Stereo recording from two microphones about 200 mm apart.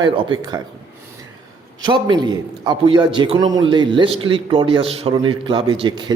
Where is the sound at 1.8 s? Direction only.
20° right (ahead or behind).